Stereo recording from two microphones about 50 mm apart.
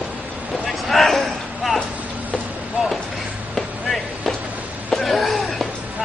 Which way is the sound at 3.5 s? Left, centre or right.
Centre.